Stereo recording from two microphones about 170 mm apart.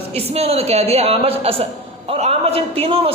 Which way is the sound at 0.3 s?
40° right (ahead or behind).